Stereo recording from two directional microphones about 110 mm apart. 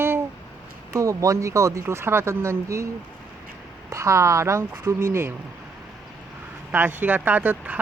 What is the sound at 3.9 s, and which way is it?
Speech, 25° right (ahead or behind).